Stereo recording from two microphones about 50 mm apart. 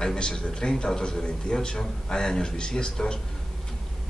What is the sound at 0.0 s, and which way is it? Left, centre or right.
A man's voice, centre.